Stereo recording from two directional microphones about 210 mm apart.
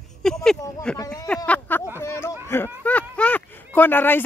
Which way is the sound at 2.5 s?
10° left (ahead or behind).